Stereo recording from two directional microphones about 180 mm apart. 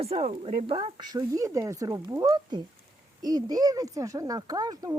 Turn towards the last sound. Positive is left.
turn(degrees=-20)  # may be behind; listen again after turning